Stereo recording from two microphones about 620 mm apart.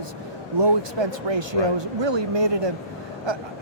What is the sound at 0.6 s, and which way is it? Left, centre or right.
Speech, right.